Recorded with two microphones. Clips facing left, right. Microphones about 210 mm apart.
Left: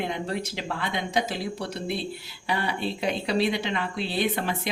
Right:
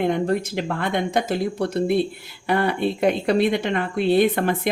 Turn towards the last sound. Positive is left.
turn(degrees=-50)  # may be behind; listen again after turning